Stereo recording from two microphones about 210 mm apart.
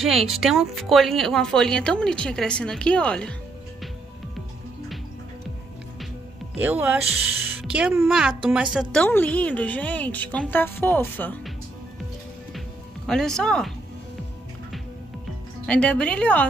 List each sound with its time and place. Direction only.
0.3 s speech: centre (ahead or behind)
6.5 s speech: 5° right (ahead or behind)
9.0 s speech: 5° left (ahead or behind)
12.5 s music: centre (ahead or behind)
15.6 s speech: 5° left (ahead or behind)